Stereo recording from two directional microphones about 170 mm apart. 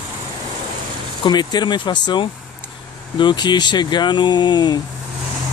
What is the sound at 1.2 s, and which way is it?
Speech, 25° left (ahead or behind).